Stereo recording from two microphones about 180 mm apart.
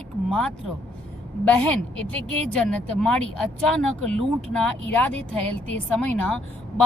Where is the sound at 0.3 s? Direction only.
5° left (ahead or behind).